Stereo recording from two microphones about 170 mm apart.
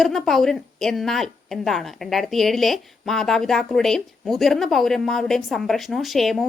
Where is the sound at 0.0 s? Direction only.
Centre (ahead or behind).